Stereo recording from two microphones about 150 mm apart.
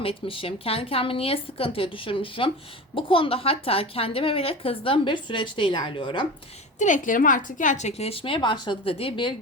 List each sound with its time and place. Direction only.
0.0 s a woman's voice: 35° left (ahead or behind)
6.7 s a woman's voice: 55° left (ahead or behind); by 9.3 s 35° left (ahead or behind)